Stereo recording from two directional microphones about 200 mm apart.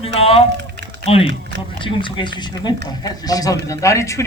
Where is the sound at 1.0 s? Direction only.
25° left (ahead or behind).